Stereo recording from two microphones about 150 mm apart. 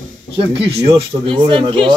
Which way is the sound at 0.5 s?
40° right (ahead or behind).